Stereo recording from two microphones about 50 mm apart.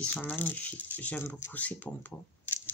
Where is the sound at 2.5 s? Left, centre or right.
Left.